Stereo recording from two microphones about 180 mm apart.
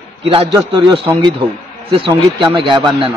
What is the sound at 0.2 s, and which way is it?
A man's voice, 30° right (ahead or behind).